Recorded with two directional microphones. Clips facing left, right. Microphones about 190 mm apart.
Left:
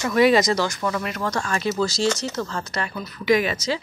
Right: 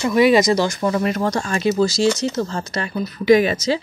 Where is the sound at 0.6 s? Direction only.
30° right (ahead or behind).